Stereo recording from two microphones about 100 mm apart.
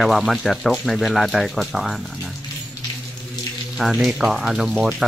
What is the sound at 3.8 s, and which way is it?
Speech, 5° right (ahead or behind).